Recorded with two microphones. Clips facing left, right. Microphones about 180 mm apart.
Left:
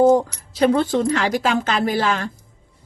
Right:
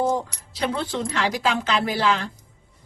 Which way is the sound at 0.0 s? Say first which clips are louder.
Left 9 dB; 45° left (ahead or behind).